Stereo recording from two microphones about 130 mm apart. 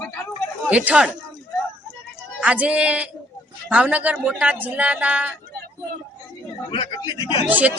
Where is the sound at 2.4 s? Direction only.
10° right (ahead or behind).